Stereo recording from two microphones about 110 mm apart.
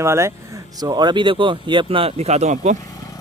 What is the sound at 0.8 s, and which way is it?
Speech, 40° right (ahead or behind).